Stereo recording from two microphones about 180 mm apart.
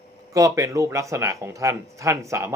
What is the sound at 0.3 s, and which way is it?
Speech, 15° right (ahead or behind).